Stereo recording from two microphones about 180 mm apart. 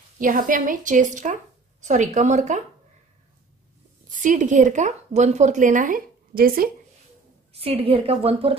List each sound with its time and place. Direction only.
0.2 s speech: 50° right (ahead or behind)
4.1 s speech: 45° right (ahead or behind)
7.5 s a woman's voice: 35° right (ahead or behind)